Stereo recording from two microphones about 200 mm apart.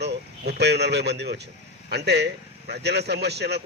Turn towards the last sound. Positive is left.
turn(degrees=-55)  # may be behind; listen again after turning